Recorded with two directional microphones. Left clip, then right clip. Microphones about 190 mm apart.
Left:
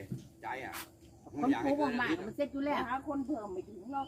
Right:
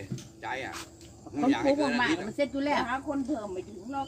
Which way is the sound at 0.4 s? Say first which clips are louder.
Right 5 dB; 15° right (ahead or behind).